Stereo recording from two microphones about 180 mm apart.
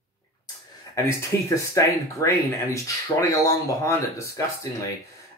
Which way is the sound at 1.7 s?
15° left (ahead or behind).